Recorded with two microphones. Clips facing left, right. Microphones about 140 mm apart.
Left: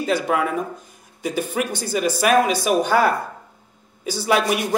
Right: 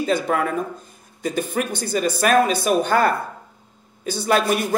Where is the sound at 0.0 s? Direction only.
5° left (ahead or behind).